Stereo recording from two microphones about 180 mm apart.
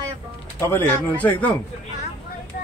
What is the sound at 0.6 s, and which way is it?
Speech, 10° left (ahead or behind).